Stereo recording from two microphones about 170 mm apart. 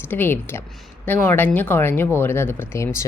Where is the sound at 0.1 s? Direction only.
10° left (ahead or behind).